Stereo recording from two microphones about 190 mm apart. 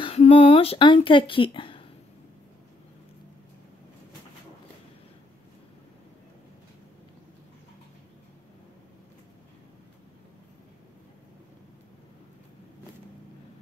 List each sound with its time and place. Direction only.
0.0 s speech: 30° left (ahead or behind)